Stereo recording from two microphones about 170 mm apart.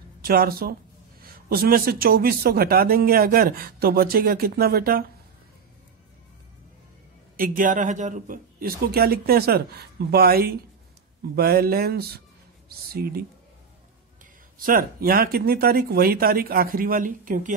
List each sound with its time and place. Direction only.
0.2 s speech: 65° right (ahead or behind)
7.3 s speech: 55° right (ahead or behind)
14.6 s speech: 55° right (ahead or behind)